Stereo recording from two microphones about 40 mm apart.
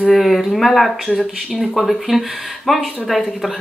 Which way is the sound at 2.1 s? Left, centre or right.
Centre.